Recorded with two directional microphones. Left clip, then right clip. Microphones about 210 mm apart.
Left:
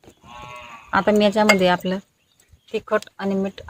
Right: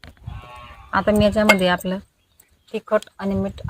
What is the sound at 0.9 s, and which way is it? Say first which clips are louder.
Speech: even; 20° left (ahead or behind).